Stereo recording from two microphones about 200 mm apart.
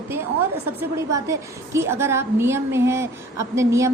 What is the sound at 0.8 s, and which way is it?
A woman's voice, 15° right (ahead or behind).